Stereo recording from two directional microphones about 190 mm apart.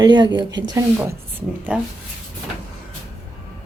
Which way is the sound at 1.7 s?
5° right (ahead or behind).